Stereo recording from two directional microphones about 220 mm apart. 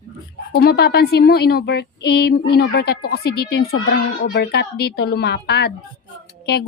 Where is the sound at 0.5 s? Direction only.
45° left (ahead or behind).